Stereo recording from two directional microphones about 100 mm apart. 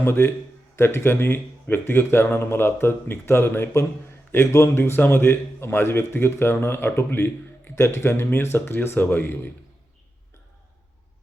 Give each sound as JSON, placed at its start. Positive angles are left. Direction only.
{"t": 0.0, "sound": "a man's voice", "side_deg": 25}